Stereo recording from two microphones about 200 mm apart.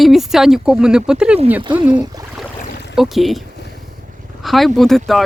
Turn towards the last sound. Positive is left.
turn(degrees=0)  # may be behind; listen again after turning